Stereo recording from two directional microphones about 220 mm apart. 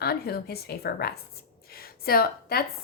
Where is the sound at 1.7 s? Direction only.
45° left (ahead or behind).